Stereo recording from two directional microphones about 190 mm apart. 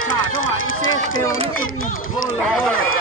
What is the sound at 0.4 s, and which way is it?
Run, 90° left.